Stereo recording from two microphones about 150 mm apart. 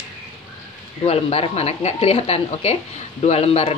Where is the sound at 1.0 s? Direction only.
40° left (ahead or behind).